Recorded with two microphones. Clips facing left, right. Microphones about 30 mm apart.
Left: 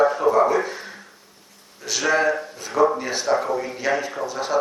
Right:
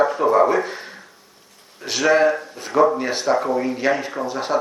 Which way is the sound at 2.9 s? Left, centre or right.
Right.